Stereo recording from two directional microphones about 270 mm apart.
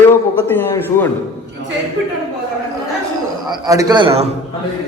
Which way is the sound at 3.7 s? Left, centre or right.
Centre.